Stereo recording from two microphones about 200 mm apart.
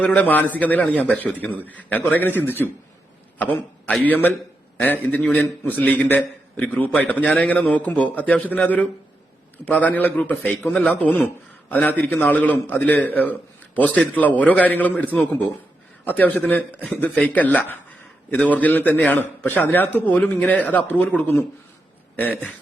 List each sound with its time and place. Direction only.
0.0 s a man's voice: 5° left (ahead or behind)